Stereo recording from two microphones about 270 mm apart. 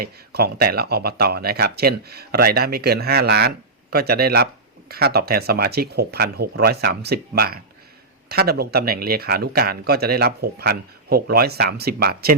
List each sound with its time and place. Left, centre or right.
0.0 s speech: right